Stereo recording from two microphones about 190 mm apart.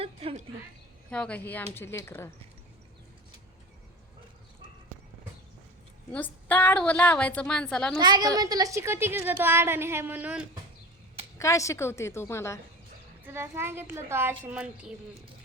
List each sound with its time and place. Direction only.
0.0 s a sound: 30° right (ahead or behind)
1.1 s a woman's voice: 5° left (ahead or behind)
6.1 s a woman's voice: 10° left (ahead or behind)
7.9 s a woman's voice: 20° right (ahead or behind)
11.3 s a woman's voice: 15° left (ahead or behind)
13.2 s a woman's voice: 10° right (ahead or behind)